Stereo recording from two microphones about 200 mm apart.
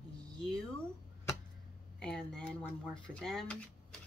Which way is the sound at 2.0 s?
5° left (ahead or behind).